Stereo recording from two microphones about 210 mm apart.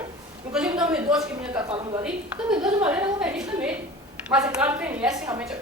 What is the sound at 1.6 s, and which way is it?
Speech, 20° right (ahead or behind).